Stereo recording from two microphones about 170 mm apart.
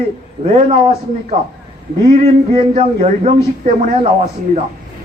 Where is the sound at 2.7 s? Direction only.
40° right (ahead or behind).